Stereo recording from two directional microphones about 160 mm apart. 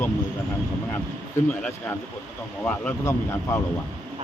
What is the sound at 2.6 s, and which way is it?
Speech, 15° left (ahead or behind).